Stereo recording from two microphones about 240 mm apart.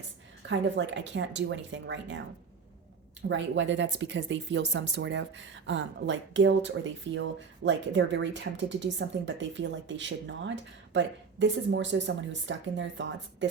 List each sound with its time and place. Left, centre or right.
0.4 s speech: right
3.2 s speech: right